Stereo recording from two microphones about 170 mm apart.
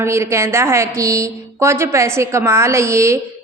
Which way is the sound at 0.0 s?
15° right (ahead or behind).